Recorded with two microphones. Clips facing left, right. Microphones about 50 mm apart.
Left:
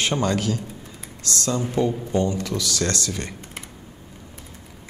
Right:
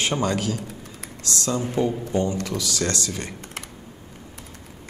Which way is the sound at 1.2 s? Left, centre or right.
Left.